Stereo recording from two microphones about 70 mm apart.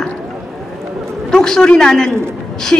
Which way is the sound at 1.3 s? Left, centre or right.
Centre.